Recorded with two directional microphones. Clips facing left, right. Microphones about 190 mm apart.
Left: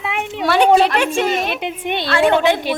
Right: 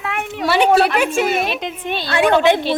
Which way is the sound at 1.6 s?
10° left (ahead or behind).